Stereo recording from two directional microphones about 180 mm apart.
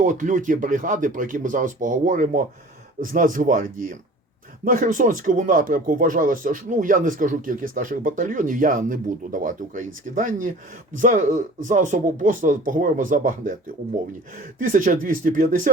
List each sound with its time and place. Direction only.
0.0 s speech: 45° right (ahead or behind)
14.6 s speech: 45° right (ahead or behind)